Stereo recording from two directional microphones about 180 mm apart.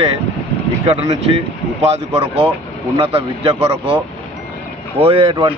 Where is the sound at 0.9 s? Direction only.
30° right (ahead or behind).